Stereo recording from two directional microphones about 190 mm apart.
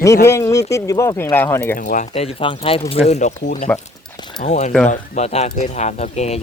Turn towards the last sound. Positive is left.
turn(degrees=35)  # may be behind; listen again after turning